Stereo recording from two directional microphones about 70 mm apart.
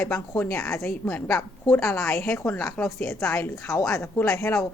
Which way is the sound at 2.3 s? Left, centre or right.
Left.